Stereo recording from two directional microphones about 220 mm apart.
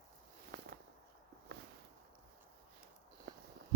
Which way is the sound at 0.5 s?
45° right (ahead or behind).